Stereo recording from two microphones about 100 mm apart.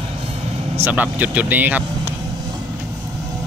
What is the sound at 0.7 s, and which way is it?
Speech, 20° right (ahead or behind).